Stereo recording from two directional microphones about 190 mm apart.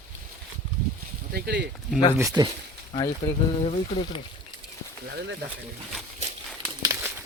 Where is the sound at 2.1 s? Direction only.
20° right (ahead or behind).